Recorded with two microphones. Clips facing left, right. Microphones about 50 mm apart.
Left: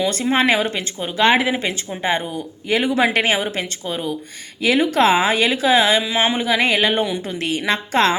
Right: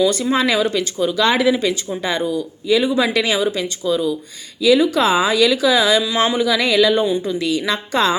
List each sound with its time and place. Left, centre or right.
0.0 s speech: left
2.6 s speech: left
7.0 s speech: left